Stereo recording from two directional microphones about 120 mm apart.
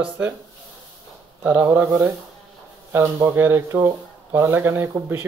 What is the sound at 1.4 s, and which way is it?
Speech, 15° right (ahead or behind).